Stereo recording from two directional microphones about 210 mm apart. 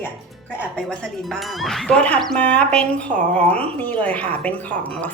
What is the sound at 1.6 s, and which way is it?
Speech, 5° left (ahead or behind).